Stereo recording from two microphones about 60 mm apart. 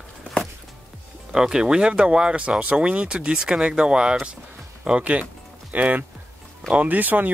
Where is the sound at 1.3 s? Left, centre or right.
Centre.